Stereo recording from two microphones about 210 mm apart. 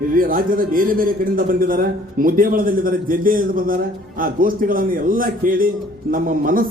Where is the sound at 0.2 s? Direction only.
40° right (ahead or behind).